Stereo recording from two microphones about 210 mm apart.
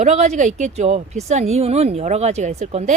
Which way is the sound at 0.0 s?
35° right (ahead or behind).